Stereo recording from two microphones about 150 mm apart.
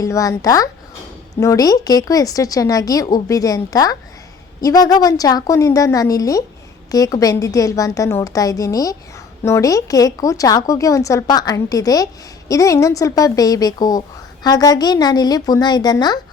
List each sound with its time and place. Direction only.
0.0 s a woman's voice: 20° left (ahead or behind)